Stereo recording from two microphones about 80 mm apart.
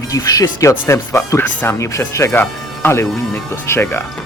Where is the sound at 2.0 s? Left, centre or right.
Left.